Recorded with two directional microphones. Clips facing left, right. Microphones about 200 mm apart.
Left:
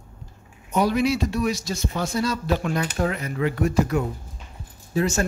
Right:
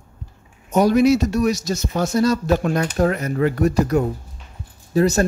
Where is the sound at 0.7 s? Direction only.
45° right (ahead or behind).